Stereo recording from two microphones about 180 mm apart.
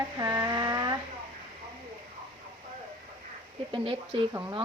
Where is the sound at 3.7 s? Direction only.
30° right (ahead or behind).